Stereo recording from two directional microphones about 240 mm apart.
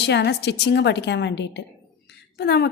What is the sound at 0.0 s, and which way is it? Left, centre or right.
A woman's voice, left.